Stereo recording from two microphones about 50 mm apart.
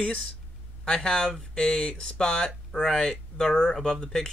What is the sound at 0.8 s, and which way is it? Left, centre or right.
Speech, centre.